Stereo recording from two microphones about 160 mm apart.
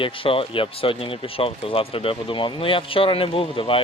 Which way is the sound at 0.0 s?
35° left (ahead or behind).